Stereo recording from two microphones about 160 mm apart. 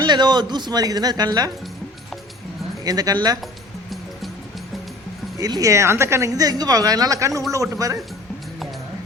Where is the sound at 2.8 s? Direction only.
25° right (ahead or behind).